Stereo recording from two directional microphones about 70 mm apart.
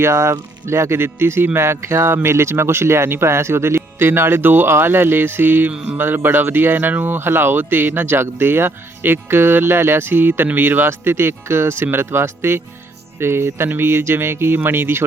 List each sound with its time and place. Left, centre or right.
0.0 s speech: right